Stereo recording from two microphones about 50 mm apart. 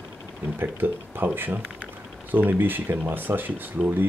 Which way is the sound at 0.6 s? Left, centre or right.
Right.